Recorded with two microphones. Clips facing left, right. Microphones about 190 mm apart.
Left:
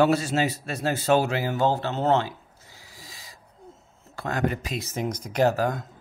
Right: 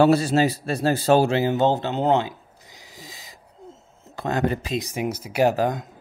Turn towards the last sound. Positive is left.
turn(degrees=-20)  # may be behind; listen again after turning